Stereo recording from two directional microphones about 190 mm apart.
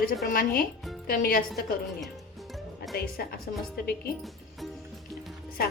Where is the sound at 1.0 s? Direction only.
50° left (ahead or behind).